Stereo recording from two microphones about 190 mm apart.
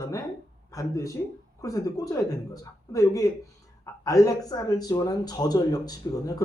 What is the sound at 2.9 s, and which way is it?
Speech, 15° left (ahead or behind).